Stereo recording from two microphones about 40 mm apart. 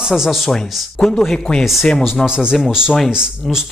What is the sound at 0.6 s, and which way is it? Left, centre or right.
Speech, centre.